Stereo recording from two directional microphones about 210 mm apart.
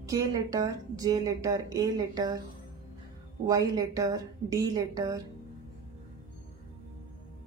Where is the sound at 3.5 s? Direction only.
15° right (ahead or behind).